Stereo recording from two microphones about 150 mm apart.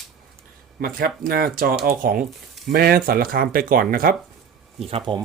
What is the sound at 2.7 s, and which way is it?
Speech, 85° right.